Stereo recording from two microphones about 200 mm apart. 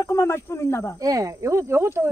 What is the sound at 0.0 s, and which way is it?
Speech, 15° left (ahead or behind).